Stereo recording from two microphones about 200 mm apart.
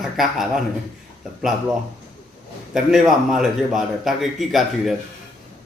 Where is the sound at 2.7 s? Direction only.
Centre (ahead or behind).